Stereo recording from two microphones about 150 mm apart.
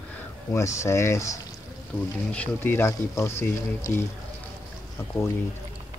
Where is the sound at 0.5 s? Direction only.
20° left (ahead or behind).